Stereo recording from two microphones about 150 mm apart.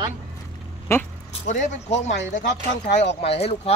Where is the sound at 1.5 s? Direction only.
55° left (ahead or behind).